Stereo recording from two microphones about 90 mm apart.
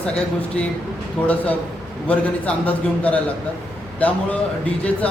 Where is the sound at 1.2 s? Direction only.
15° left (ahead or behind).